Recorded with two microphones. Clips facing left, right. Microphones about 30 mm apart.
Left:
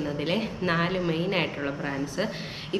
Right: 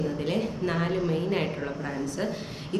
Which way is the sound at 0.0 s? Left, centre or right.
Left.